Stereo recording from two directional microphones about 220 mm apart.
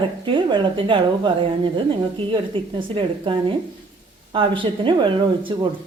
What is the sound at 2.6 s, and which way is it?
Speech, 25° right (ahead or behind).